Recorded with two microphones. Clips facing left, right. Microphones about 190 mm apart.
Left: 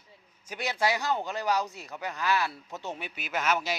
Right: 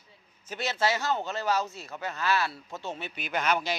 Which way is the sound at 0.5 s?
15° left (ahead or behind).